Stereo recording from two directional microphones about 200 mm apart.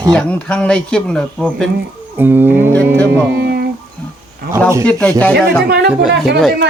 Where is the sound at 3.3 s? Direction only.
55° right (ahead or behind).